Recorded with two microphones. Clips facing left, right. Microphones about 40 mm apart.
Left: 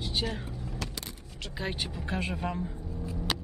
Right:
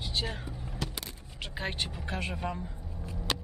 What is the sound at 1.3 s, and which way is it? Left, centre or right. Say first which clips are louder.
Speech: left 1 dB; centre.